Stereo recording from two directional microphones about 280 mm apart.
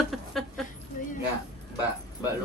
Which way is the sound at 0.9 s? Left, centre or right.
Left.